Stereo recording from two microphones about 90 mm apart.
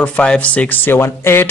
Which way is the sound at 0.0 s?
15° left (ahead or behind).